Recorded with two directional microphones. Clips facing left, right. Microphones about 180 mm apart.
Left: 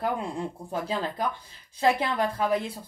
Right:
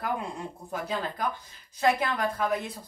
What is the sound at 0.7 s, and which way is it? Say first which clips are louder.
Speech: even; 30° left (ahead or behind).